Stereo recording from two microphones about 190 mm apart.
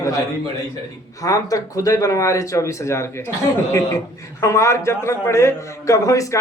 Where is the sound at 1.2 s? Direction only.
20° left (ahead or behind).